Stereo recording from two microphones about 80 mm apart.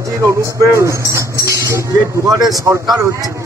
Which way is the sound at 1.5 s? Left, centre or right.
Right.